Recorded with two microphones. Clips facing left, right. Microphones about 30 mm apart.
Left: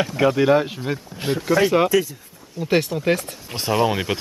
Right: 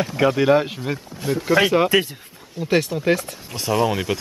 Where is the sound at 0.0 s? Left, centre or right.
Centre.